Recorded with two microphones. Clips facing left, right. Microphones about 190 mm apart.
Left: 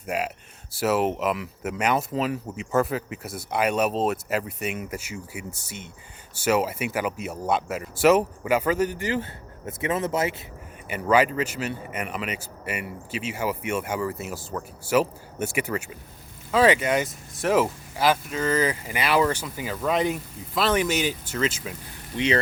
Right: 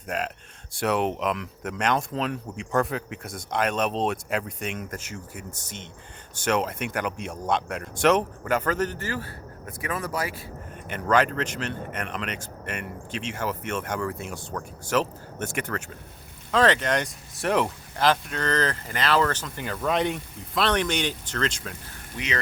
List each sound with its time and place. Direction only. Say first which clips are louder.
0.1 s a man's voice: left 2 dB; 10° left (ahead or behind)
10.8 s a man's voice: left 2 dB; 5° left (ahead or behind)
22.1 s speech: left 9 dB; 20° left (ahead or behind)